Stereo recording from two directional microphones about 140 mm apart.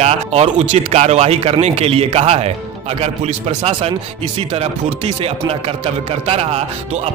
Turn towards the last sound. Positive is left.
turn(degrees=-45)  # may be behind; listen again after turning